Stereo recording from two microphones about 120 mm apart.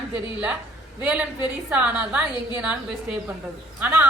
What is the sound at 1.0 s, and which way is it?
A woman's voice, 10° right (ahead or behind).